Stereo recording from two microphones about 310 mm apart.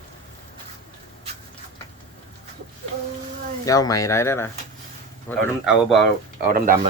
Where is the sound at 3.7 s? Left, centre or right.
Centre.